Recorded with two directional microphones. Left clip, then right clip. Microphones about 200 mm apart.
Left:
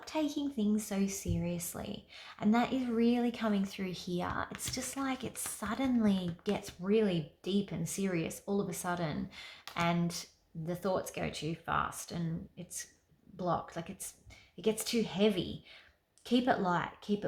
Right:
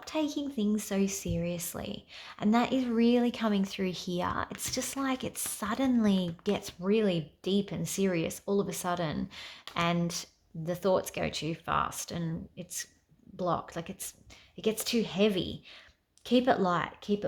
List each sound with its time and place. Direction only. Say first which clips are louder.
0.0 s a woman's voice: right 2 dB; 40° right (ahead or behind)